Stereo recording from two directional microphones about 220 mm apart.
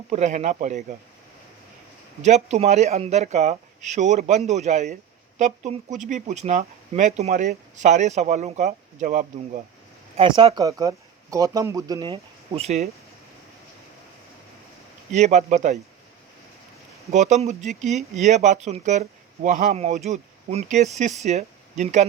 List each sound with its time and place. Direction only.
0.1 s speech: 30° right (ahead or behind)
2.2 s speech: 30° right (ahead or behind)
10.2 s speech: 25° right (ahead or behind)
15.1 s speech: 30° right (ahead or behind)
17.1 s speech: 30° right (ahead or behind)